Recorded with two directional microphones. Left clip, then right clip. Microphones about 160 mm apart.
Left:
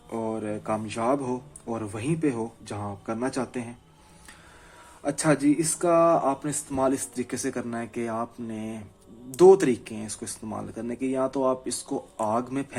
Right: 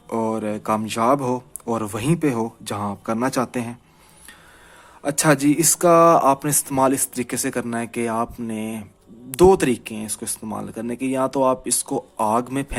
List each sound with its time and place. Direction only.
0.1 s speech: 55° right (ahead or behind)
5.0 s speech: 40° right (ahead or behind)